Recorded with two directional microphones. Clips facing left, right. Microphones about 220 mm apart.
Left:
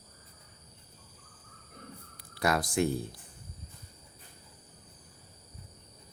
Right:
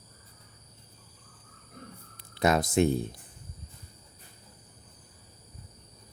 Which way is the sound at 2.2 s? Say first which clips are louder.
Right 4 dB; 20° right (ahead or behind).